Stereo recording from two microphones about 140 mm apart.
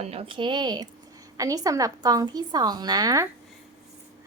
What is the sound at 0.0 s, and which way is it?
A woman's voice, 45° right (ahead or behind).